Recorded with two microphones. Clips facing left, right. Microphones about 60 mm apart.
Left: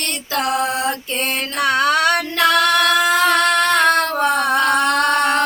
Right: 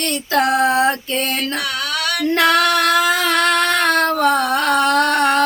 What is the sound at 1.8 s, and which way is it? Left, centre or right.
Female singing, left.